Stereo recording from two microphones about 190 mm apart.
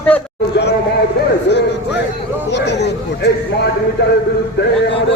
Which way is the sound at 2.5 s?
65° left (ahead or behind).